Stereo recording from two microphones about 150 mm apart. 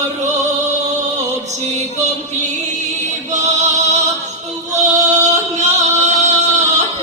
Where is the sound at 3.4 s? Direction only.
50° right (ahead or behind).